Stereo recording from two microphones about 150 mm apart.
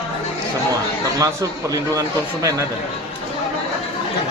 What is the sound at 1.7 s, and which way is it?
Speech, 20° right (ahead or behind).